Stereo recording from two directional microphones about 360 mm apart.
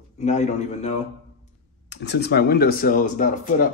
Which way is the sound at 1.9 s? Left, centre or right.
Left.